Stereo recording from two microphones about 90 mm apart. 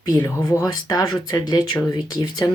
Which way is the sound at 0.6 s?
45° left (ahead or behind).